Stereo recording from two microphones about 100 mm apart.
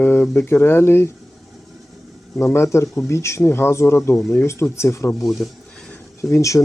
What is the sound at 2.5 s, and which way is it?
Speech, 30° left (ahead or behind).